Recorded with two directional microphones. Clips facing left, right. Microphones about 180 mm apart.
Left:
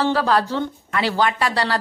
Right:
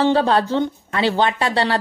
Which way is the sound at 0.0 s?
25° right (ahead or behind).